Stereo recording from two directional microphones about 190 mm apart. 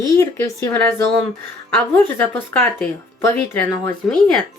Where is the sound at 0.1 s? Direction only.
15° left (ahead or behind).